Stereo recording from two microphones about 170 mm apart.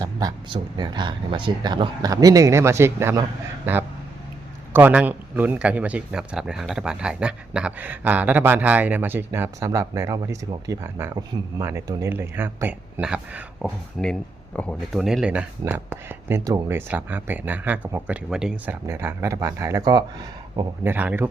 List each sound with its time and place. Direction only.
0.0 s speech: 20° right (ahead or behind)
4.7 s a man's voice: 10° right (ahead or behind)
14.0 s a man's voice: 5° left (ahead or behind); by 20.1 s 25° right (ahead or behind)
20.8 s a man's voice: 10° right (ahead or behind)